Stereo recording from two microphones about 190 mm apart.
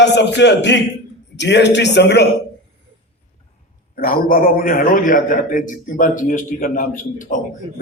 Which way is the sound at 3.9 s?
50° left (ahead or behind).